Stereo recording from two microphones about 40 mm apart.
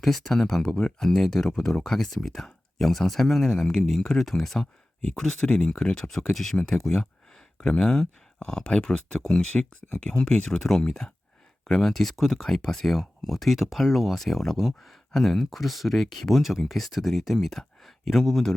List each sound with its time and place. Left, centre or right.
0.0 s speech: centre
5.5 s speech: left
6.0 s speech: centre
9.3 s speech: left
10.6 s speech: centre
16.4 s speech: centre